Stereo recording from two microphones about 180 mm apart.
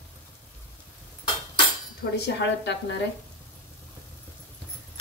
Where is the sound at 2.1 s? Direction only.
70° left (ahead or behind).